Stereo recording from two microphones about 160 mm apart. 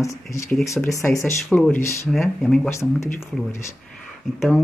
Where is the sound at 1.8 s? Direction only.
15° left (ahead or behind).